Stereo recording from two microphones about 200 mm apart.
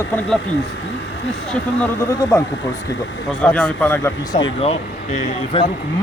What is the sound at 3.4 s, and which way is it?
Speech, 5° left (ahead or behind).